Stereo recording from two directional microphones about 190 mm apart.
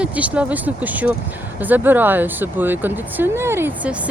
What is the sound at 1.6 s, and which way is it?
Speech, 10° right (ahead or behind).